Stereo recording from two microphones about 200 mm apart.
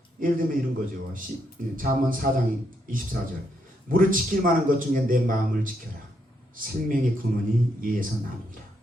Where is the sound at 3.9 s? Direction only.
45° right (ahead or behind).